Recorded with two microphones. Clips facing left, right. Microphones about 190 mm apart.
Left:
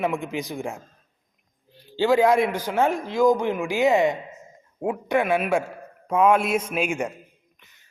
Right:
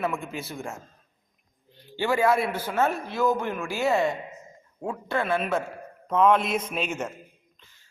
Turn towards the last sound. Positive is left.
turn(degrees=20)  # may be behind; listen again after turning